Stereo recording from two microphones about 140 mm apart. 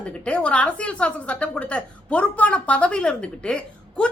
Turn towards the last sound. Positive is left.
turn(degrees=5)  # may be behind; listen again after turning